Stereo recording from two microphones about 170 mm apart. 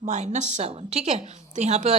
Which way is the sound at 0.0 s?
45° right (ahead or behind).